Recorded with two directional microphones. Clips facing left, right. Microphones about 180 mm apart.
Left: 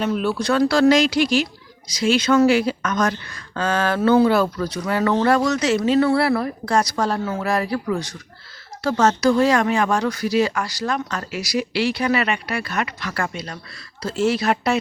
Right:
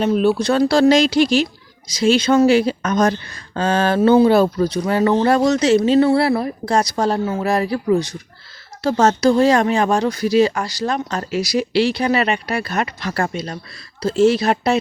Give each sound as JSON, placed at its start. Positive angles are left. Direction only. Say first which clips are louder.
{"t": 0.0, "sound": "speech", "louder": "right 5 dB", "side_deg": -25}